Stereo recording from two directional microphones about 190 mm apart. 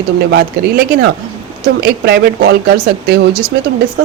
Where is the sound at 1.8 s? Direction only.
55° right (ahead or behind).